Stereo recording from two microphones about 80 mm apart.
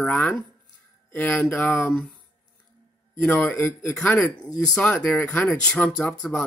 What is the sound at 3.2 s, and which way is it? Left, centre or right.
Speech, centre.